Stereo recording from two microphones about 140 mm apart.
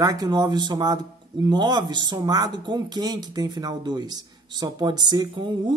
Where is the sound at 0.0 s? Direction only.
25° right (ahead or behind).